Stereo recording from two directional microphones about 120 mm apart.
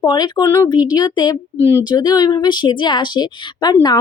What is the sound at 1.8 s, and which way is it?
A woman's voice, 35° left (ahead or behind).